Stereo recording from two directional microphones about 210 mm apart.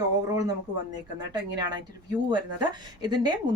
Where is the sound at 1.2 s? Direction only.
20° right (ahead or behind).